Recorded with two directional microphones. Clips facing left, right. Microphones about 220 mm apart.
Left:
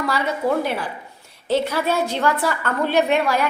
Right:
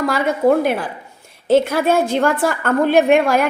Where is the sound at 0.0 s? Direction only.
45° right (ahead or behind).